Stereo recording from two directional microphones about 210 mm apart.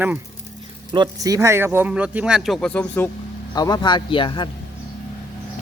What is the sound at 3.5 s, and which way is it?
Speech, 20° left (ahead or behind).